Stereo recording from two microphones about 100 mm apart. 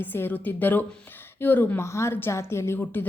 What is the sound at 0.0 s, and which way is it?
A woman's voice, 20° left (ahead or behind).